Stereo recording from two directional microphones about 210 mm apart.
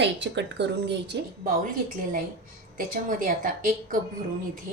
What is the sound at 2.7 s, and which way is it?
A woman's voice, 40° right (ahead or behind).